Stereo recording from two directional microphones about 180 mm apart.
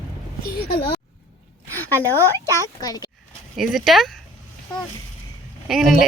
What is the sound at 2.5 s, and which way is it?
Speech, 20° left (ahead or behind).